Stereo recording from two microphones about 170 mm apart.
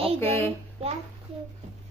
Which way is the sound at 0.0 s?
35° right (ahead or behind).